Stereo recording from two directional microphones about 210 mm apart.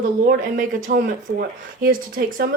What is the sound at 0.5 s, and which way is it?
Speech, 45° right (ahead or behind).